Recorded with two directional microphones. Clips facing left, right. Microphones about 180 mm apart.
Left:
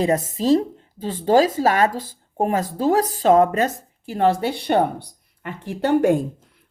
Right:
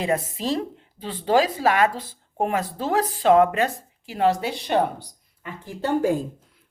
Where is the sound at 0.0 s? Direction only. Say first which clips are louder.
Left 5 dB; 40° left (ahead or behind); by 6.2 s 75° left (ahead or behind).